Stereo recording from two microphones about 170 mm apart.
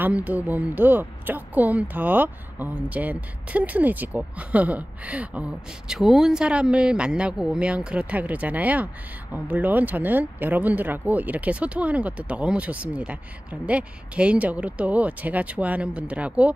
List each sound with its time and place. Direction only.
0.0 s speech: 10° right (ahead or behind)